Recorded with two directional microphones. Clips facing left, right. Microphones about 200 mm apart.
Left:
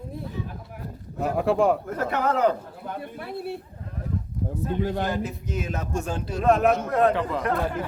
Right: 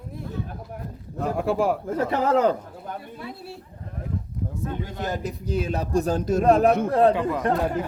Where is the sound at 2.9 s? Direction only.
55° left (ahead or behind).